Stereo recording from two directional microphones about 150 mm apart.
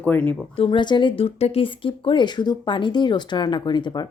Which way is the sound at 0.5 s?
35° left (ahead or behind).